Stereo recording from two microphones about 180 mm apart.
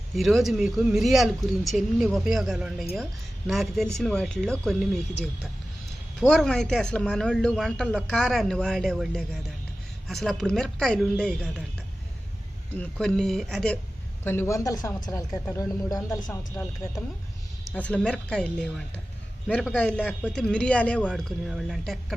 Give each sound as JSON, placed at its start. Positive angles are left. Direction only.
{"t": 0.2, "sound": "speech", "side_deg": 0}
{"t": 6.1, "sound": "speech", "side_deg": 5}
{"t": 12.7, "sound": "speech", "side_deg": 5}
{"t": 14.3, "sound": "speech", "side_deg": 15}